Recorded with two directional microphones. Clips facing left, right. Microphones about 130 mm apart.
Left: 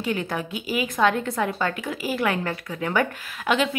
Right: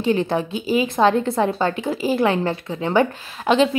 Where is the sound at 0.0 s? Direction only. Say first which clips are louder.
Right 7 dB; 30° right (ahead or behind).